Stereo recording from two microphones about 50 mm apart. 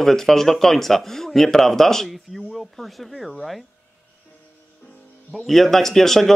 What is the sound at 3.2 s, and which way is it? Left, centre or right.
Speech, centre.